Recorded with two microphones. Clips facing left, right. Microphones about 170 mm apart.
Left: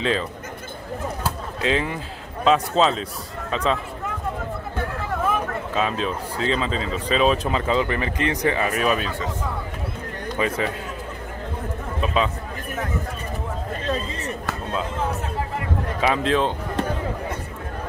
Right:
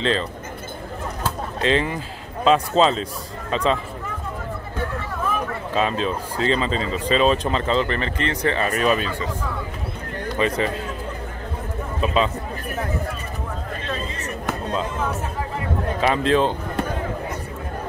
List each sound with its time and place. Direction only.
1.2 s a sound: 5° left (ahead or behind)
2.4 s speech: centre (ahead or behind)
5.8 s speech: centre (ahead or behind)
10.3 s speech: 5° left (ahead or behind)
12.0 s speech: centre (ahead or behind)
13.8 s chop: 35° left (ahead or behind)
16.0 s speech: centre (ahead or behind)